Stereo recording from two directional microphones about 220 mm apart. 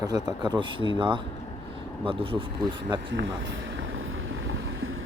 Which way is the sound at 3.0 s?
55° right (ahead or behind).